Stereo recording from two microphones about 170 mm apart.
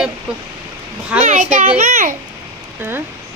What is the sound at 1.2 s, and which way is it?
Speech, 50° right (ahead or behind).